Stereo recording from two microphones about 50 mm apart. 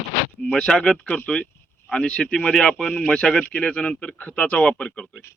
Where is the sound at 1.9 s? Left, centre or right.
Centre.